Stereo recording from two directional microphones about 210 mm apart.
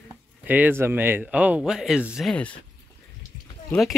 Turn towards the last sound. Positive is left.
turn(degrees=0)  # may be behind; listen again after turning